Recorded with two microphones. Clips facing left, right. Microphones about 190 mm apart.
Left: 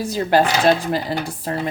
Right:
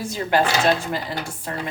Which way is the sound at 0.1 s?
35° left (ahead or behind).